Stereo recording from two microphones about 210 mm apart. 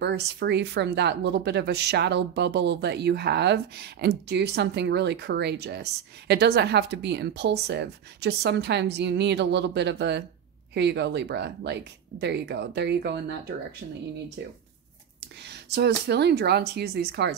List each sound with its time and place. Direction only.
0.0 s speech: 50° right (ahead or behind)
15.1 s speech: 55° right (ahead or behind)